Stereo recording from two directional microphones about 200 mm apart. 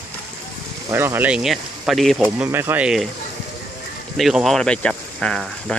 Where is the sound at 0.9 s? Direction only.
10° right (ahead or behind).